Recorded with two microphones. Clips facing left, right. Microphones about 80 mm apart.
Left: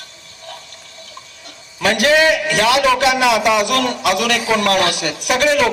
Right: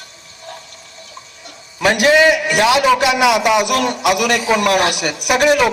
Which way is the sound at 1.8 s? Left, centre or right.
Right.